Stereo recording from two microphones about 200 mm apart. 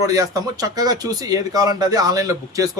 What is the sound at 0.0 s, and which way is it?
Speech, 15° right (ahead or behind).